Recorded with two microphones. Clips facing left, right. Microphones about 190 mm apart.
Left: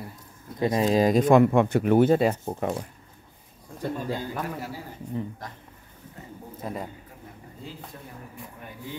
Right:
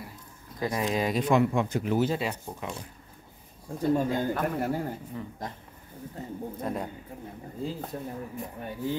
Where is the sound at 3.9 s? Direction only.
55° right (ahead or behind).